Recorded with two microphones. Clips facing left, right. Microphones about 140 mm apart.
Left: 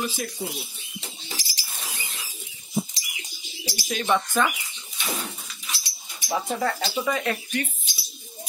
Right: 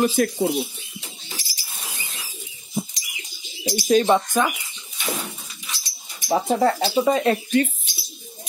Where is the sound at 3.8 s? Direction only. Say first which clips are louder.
Right 8 dB; 35° right (ahead or behind).